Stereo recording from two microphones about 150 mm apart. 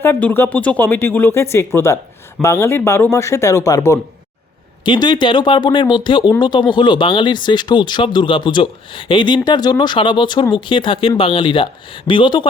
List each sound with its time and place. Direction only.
0.0 s speech: 10° left (ahead or behind); by 12.5 s 35° left (ahead or behind)